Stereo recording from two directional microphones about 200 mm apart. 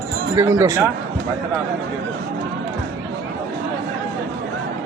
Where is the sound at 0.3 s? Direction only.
15° right (ahead or behind).